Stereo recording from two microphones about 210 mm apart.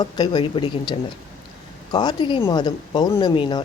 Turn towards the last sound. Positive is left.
turn(degrees=20)  # may be behind; listen again after turning